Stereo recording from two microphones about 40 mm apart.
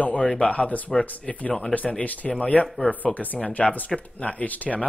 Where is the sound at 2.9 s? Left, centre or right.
Left.